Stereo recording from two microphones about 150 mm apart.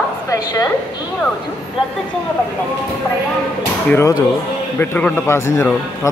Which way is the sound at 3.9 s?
20° left (ahead or behind).